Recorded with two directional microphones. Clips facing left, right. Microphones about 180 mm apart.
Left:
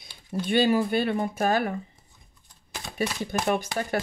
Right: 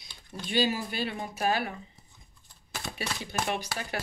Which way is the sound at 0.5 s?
55° left (ahead or behind).